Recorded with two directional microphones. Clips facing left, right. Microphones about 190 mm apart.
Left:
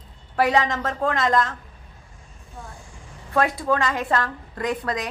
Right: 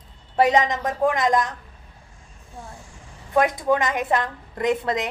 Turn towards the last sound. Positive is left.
turn(degrees=-20)  # may be behind; listen again after turning